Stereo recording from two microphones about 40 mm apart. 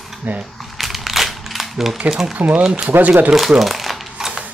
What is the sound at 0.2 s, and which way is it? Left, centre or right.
Speech, right.